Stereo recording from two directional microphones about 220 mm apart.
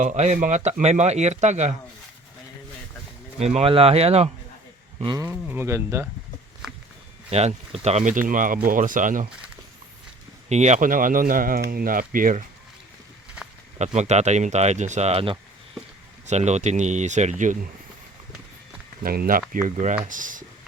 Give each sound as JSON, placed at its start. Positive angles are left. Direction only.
{"t": 0.0, "sound": "speech", "side_deg": -30}
{"t": 3.3, "sound": "speech", "side_deg": -30}
{"t": 5.2, "sound": "speech", "side_deg": -10}
{"t": 7.3, "sound": "speech", "side_deg": -30}
{"t": 10.5, "sound": "speech", "side_deg": -30}
{"t": 13.7, "sound": "speech", "side_deg": -30}
{"t": 19.0, "sound": "speech", "side_deg": -40}